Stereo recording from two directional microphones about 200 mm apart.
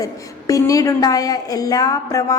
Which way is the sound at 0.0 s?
15° left (ahead or behind).